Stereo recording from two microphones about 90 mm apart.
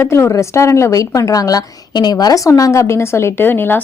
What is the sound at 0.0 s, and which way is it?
A woman's voice, 30° left (ahead or behind).